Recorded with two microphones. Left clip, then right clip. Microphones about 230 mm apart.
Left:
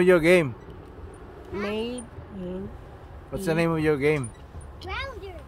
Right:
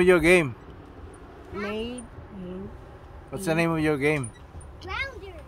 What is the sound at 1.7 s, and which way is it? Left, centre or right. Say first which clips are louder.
Speech: left 3 dB; left.